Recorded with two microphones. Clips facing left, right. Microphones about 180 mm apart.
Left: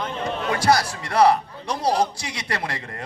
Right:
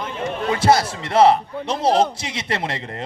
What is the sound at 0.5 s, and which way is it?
A man's voice, 25° right (ahead or behind).